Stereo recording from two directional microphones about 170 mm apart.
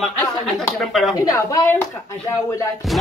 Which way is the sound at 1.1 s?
20° left (ahead or behind).